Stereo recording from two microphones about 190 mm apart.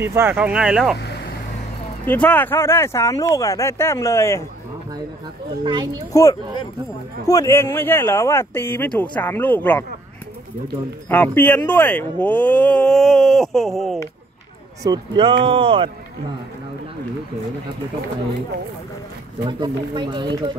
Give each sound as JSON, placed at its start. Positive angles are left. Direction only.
{"t": 0.0, "sound": "speech", "side_deg": -10}
{"t": 0.9, "sound": "vehicle", "side_deg": 60}
{"t": 2.0, "sound": "speech", "side_deg": 10}
{"t": 5.6, "sound": "speech", "side_deg": -25}
{"t": 7.2, "sound": "speech", "side_deg": 15}
{"t": 11.1, "sound": "speech", "side_deg": 10}
{"t": 14.8, "sound": "speech", "side_deg": -25}
{"t": 19.6, "sound": "speech", "side_deg": -25}